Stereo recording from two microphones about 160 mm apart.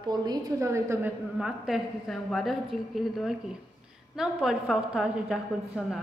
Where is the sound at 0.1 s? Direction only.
25° right (ahead or behind).